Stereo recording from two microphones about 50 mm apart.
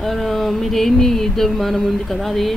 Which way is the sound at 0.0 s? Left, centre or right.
Centre.